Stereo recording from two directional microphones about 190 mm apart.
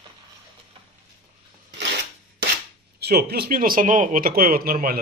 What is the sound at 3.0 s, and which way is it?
A man's voice, 55° right (ahead or behind).